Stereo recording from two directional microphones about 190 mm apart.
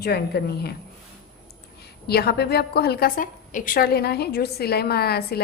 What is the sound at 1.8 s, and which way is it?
A woman's voice, 55° left (ahead or behind).